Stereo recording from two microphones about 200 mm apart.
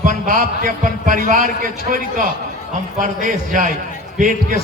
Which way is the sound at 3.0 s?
40° right (ahead or behind).